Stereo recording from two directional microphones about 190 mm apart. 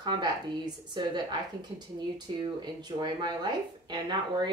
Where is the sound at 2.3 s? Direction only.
25° right (ahead or behind).